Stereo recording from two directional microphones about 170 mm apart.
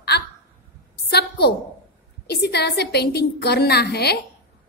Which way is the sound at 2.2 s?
75° left (ahead or behind).